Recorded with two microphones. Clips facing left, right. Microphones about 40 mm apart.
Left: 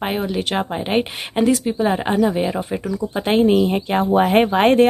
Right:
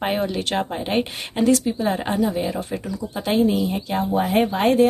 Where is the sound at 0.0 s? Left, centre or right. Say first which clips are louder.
Left 1 dB; centre.